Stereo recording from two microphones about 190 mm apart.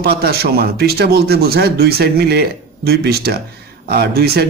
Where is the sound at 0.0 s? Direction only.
55° right (ahead or behind).